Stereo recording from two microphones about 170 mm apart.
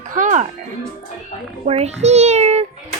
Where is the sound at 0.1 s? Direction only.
50° right (ahead or behind).